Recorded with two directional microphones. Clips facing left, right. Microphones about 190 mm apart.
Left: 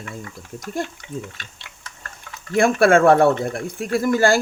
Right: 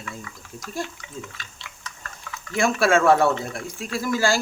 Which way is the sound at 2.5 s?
55° left (ahead or behind).